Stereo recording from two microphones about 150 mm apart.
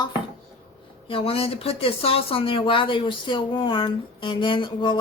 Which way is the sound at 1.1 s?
40° left (ahead or behind).